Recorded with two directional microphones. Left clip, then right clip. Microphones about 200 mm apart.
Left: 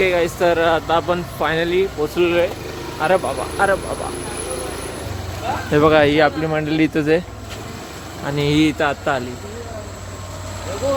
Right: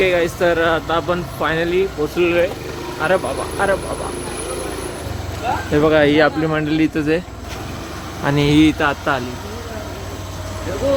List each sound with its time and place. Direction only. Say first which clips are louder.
0.0 s speech: right 1 dB; 20° left (ahead or behind)
5.7 s speech: even; 30° left (ahead or behind); by 6.7 s 15° left (ahead or behind)
6.7 s speech: left 1 dB; 25° left (ahead or behind)
8.2 s speech: right 4 dB; 5° right (ahead or behind)
8.4 s speech: right 2 dB; 15° left (ahead or behind)